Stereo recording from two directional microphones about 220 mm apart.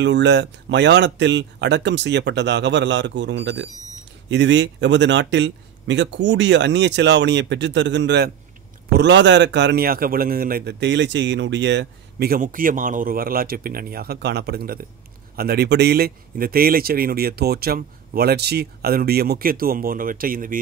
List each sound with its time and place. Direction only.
0.0 s a man's voice: 55° right (ahead or behind)